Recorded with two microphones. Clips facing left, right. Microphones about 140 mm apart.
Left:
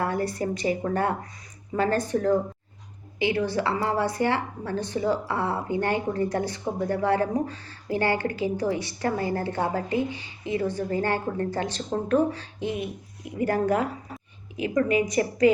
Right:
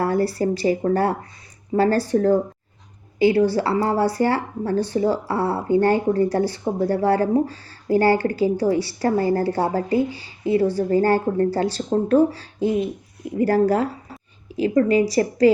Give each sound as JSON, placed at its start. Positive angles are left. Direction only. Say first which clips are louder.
{"t": 0.0, "sound": "speech", "louder": "right 6 dB", "side_deg": -35}